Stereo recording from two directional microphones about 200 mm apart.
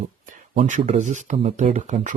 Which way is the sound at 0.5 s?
30° right (ahead or behind).